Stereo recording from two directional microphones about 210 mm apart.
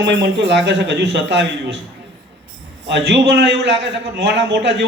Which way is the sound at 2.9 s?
55° right (ahead or behind).